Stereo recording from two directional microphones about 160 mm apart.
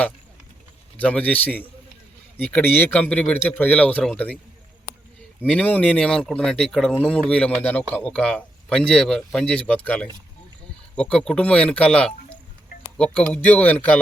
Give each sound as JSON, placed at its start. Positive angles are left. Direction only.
{"t": 0.9, "sound": "speech", "side_deg": 10}
{"t": 5.5, "sound": "speech", "side_deg": 10}